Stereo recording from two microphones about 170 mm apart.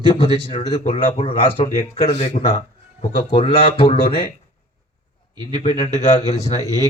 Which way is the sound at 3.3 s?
30° left (ahead or behind).